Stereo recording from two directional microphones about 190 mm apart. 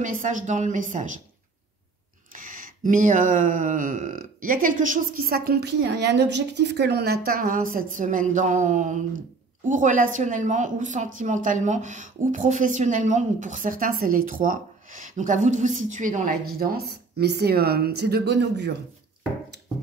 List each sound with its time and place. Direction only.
0.0 s a woman's voice: 40° right (ahead or behind)
2.3 s a woman's voice: 45° right (ahead or behind)
16.5 s speech: 55° right (ahead or behind)